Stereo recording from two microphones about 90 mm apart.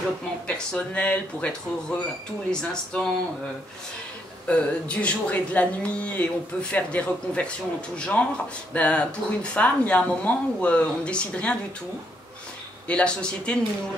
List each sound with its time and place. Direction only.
0.5 s speech: 10° left (ahead or behind)
2.5 s speech: 10° left (ahead or behind)
4.5 s speech: 15° left (ahead or behind)
12.8 s speech: 10° left (ahead or behind)